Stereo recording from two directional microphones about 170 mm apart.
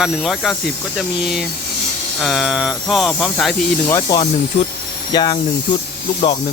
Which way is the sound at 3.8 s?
20° left (ahead or behind).